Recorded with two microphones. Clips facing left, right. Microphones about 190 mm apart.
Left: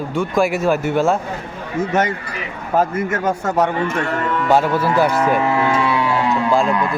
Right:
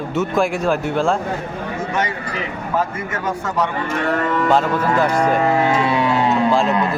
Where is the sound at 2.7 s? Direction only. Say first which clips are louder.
Left 5 dB; 45° left (ahead or behind).